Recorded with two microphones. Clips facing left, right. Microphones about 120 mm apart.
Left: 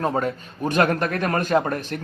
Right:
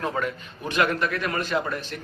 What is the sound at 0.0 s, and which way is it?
A man's voice, 40° left (ahead or behind).